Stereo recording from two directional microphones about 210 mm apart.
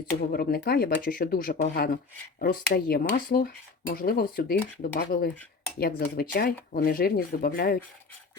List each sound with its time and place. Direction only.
0.3 s speech: 45° left (ahead or behind)